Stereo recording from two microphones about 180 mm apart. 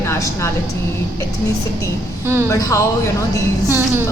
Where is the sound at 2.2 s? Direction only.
15° right (ahead or behind).